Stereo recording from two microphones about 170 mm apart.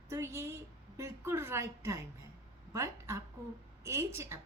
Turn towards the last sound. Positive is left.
turn(degrees=-15)  # may be behind; listen again after turning